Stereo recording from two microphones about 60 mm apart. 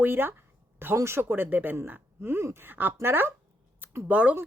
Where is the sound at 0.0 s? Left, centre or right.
Right.